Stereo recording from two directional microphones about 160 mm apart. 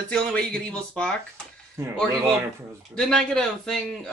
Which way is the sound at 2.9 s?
5° left (ahead or behind).